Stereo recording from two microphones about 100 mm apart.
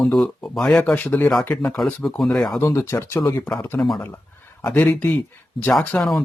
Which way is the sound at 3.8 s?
Centre (ahead or behind).